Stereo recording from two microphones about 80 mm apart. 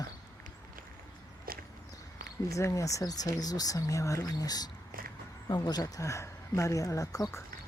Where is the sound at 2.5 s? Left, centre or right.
Left.